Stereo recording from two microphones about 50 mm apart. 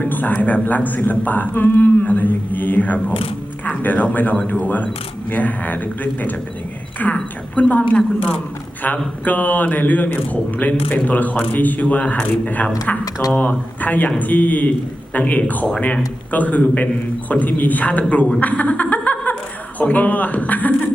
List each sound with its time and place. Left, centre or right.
0.0 s a man's voice: left
18.3 s a sound: left
19.8 s a man's voice: left